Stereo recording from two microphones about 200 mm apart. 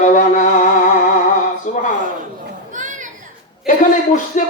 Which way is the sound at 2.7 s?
40° right (ahead or behind).